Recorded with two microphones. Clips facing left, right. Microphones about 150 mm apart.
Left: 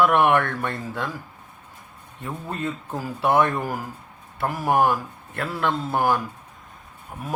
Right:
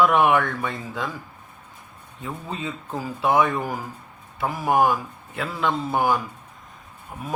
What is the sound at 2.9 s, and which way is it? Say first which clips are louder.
Speech: right 1 dB; 5° left (ahead or behind).